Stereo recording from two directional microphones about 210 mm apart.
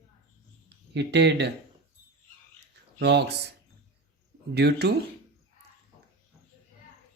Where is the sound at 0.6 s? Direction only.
55° right (ahead or behind).